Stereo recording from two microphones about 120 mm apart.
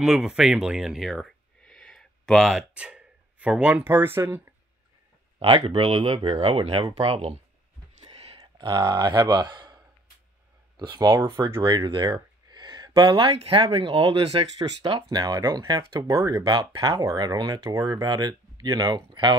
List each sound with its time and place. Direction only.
0.0 s speech: 5° right (ahead or behind)
5.4 s speech: 55° right (ahead or behind)
6.0 s speech: 45° right (ahead or behind)
8.0 s a sound: 55° right (ahead or behind)
8.4 s speech: 35° right (ahead or behind)
10.8 s speech: 35° right (ahead or behind)
11.6 s speech: 40° right (ahead or behind)
14.6 s speech: 40° right (ahead or behind); by 16.4 s 25° right (ahead or behind)
16.4 s speech: 40° right (ahead or behind)